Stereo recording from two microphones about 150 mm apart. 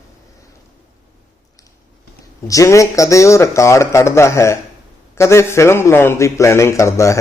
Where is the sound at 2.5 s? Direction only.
20° left (ahead or behind).